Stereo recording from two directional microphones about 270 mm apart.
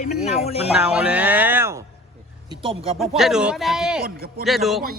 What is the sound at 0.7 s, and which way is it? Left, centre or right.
Speech, centre.